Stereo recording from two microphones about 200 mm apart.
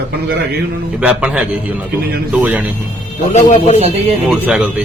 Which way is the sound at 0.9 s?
5° right (ahead or behind).